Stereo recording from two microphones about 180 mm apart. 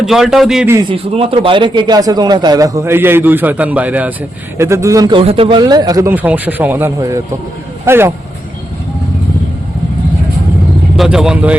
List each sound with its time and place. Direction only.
0.0 s a man's voice: 5° right (ahead or behind)
0.9 s a man's voice: 30° right (ahead or behind); by 8.1 s 15° right (ahead or behind)
10.9 s a man's voice: centre (ahead or behind)